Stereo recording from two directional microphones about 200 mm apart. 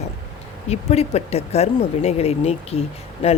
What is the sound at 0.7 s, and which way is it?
Speech, 30° left (ahead or behind).